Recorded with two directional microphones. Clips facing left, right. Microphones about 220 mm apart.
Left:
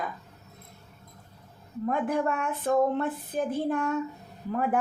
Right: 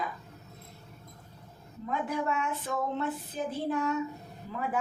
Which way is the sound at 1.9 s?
55° left (ahead or behind).